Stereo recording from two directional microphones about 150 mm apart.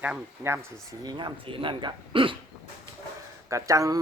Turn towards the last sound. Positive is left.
turn(degrees=-20)  # may be behind; listen again after turning